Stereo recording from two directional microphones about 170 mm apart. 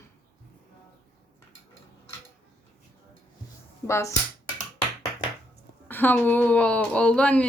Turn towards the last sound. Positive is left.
turn(degrees=5)  # may be behind; listen again after turning